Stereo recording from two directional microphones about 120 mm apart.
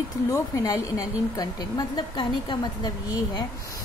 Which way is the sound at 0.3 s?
30° left (ahead or behind).